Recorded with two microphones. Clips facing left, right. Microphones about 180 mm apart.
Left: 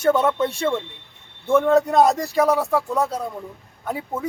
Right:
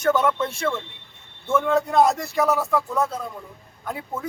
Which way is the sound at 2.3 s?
30° left (ahead or behind).